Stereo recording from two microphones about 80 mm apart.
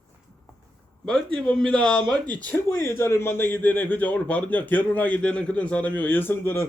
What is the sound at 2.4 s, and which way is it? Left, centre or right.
A man's voice, left.